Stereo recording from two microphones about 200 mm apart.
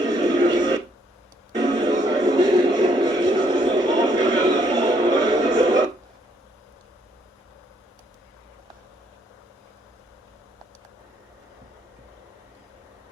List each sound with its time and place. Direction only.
0.0 s television: 20° right (ahead or behind)
1.5 s music: 20° right (ahead or behind)